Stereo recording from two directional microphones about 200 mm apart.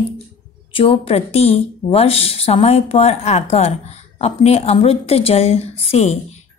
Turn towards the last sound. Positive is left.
turn(degrees=35)  # may be behind; listen again after turning